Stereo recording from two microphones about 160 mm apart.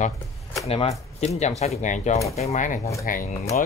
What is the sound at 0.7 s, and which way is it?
Speech, 40° left (ahead or behind).